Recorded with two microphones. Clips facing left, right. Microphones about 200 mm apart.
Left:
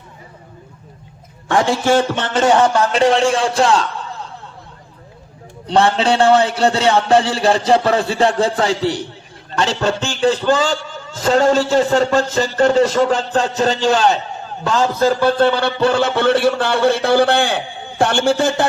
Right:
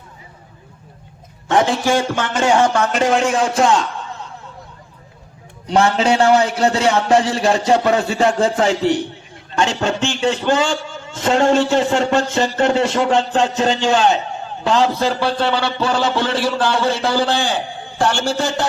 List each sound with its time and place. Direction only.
1.5 s a man's voice: 20° right (ahead or behind)
2.5 s a man's voice: 35° left (ahead or behind)
5.6 s a man's voice: 30° left (ahead or behind); by 18.6 s 55° left (ahead or behind)